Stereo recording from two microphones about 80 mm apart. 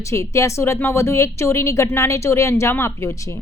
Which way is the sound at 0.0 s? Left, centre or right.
Left.